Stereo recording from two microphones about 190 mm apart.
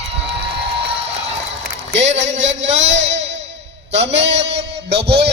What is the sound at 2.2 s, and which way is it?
Music, 75° right (ahead or behind).